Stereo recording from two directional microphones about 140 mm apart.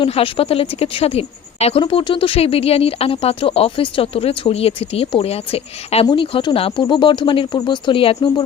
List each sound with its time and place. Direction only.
0.0 s a woman's voice: 40° left (ahead or behind)